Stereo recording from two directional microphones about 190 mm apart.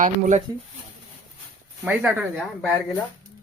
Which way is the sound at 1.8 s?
5° right (ahead or behind).